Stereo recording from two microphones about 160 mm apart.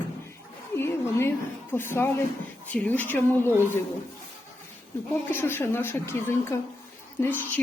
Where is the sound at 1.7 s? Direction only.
15° left (ahead or behind).